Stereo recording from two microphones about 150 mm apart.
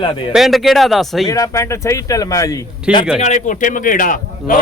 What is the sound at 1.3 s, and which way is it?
Speech, 20° left (ahead or behind).